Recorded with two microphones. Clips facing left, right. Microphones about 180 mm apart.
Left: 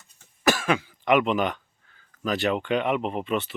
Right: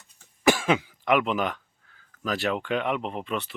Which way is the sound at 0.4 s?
20° right (ahead or behind).